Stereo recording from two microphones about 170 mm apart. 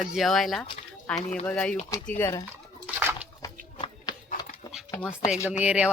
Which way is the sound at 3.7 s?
30° left (ahead or behind).